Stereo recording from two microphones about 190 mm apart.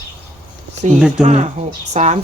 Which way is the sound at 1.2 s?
35° right (ahead or behind).